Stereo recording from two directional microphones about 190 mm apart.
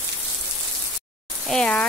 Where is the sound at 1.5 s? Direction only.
5° left (ahead or behind).